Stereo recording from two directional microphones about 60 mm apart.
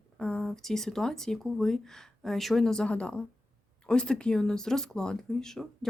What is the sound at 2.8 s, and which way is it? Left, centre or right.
Speech, centre.